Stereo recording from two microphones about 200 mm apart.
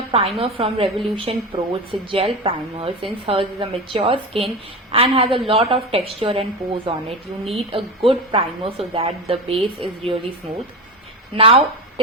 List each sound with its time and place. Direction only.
0.1 s a woman's voice: 30° right (ahead or behind)
11.3 s speech: 30° right (ahead or behind)